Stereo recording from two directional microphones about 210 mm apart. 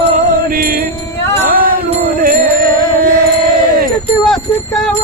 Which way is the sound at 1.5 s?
45° right (ahead or behind).